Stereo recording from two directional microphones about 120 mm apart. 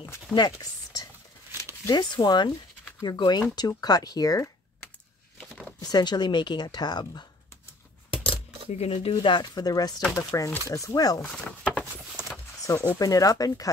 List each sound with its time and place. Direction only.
0.3 s speech: 35° left (ahead or behind)
5.4 s a sound: 5° left (ahead or behind)
5.8 s speech: 35° left (ahead or behind)
8.1 s coin: 50° left (ahead or behind)
9.2 s speech: 40° left (ahead or behind)
11.3 s a sound: 10° left (ahead or behind)
12.7 s speech: 30° left (ahead or behind)